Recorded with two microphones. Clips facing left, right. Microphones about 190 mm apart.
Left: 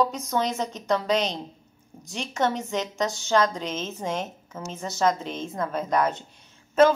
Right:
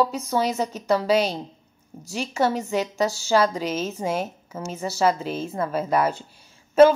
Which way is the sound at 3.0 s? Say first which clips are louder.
Right 4 dB; 35° right (ahead or behind).